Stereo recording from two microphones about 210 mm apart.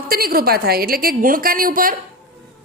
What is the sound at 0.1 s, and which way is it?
A woman's voice, 45° right (ahead or behind).